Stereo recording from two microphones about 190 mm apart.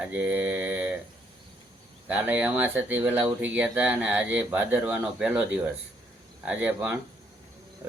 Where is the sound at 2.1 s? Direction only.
10° right (ahead or behind).